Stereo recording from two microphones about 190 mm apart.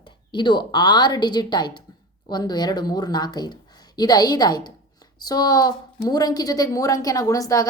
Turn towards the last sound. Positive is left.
turn(degrees=20)  # may be behind; listen again after turning